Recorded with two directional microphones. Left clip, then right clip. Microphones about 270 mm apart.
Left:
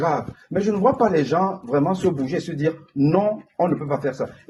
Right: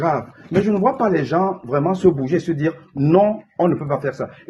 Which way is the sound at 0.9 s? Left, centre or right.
Right.